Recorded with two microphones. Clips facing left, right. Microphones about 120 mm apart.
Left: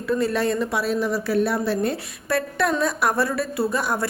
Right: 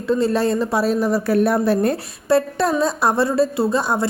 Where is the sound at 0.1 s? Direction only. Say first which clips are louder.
Right 4 dB; 30° right (ahead or behind); by 2.0 s 45° right (ahead or behind).